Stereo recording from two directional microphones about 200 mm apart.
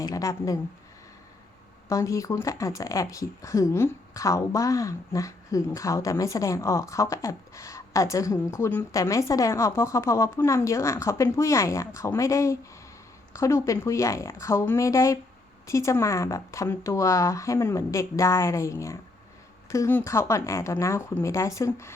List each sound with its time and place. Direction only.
0.0 s speech: 15° left (ahead or behind)
1.9 s speech: 15° left (ahead or behind)